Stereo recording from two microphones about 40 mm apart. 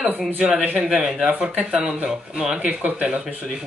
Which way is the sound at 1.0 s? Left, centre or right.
Right.